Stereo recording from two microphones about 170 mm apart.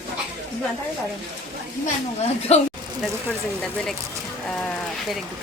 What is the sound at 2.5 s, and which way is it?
Speech, 40° left (ahead or behind).